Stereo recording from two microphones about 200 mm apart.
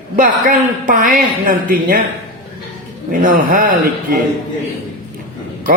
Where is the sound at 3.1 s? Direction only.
40° right (ahead or behind).